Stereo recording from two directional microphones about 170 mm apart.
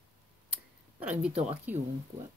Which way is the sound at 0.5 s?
5° right (ahead or behind).